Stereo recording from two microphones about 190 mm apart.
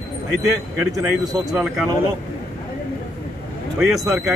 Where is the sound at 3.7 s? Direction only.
Centre (ahead or behind).